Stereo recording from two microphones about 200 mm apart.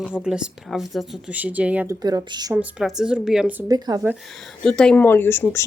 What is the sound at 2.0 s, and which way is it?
Speech, 20° right (ahead or behind).